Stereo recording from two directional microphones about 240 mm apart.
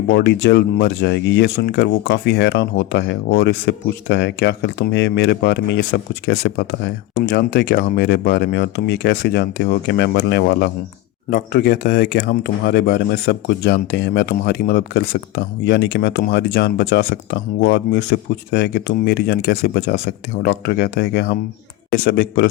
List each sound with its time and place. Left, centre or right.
0.1 s speech: left